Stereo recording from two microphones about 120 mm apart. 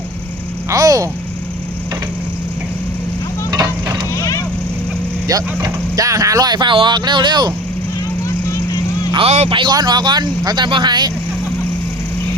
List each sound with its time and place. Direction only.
0.7 s vehicle: 30° right (ahead or behind)
3.5 s a sound: 35° right (ahead or behind)
5.3 s speech: 30° right (ahead or behind)
9.1 s a man's voice: 60° right (ahead or behind)
9.5 s speech: 40° right (ahead or behind)